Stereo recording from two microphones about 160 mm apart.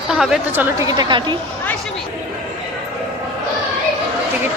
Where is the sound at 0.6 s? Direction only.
20° right (ahead or behind).